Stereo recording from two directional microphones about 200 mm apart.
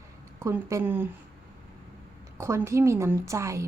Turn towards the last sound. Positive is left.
turn(degrees=-15)  # may be behind; listen again after turning